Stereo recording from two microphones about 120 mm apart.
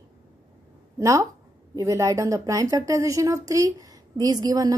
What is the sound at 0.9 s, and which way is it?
A woman's voice, 25° right (ahead or behind).